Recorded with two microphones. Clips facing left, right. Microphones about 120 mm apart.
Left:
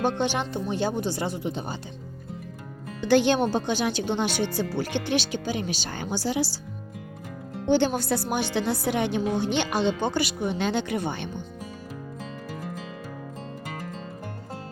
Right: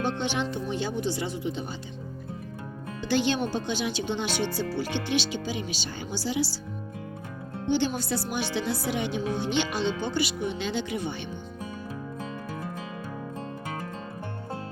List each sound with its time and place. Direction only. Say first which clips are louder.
0.2 s a woman's voice: left 2 dB; 45° left (ahead or behind)
3.1 s a woman's voice: left 5 dB; 50° left (ahead or behind)
7.7 s a woman's voice: left 4 dB; 50° left (ahead or behind)